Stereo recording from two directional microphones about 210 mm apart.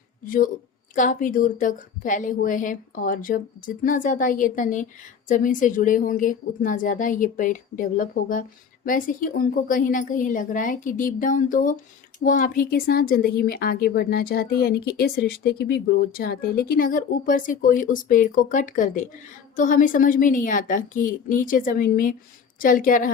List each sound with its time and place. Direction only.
0.3 s a woman's voice: 40° left (ahead or behind)